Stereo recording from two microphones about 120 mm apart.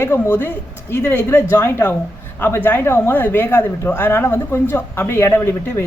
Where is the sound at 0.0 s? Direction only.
20° left (ahead or behind).